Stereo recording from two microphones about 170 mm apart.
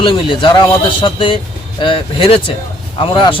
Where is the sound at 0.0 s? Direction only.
30° left (ahead or behind).